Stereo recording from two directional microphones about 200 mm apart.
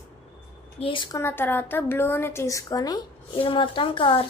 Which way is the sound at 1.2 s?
10° left (ahead or behind).